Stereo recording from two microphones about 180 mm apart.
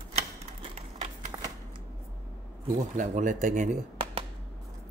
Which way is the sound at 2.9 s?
45° right (ahead or behind).